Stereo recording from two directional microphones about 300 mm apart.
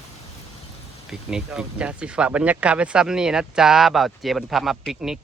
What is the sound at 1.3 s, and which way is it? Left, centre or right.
Speech, centre.